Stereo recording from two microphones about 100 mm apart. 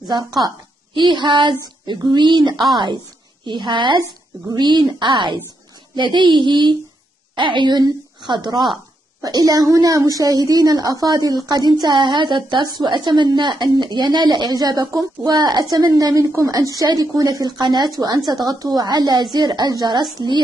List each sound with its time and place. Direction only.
0.1 s a woman's voice: 45° right (ahead or behind)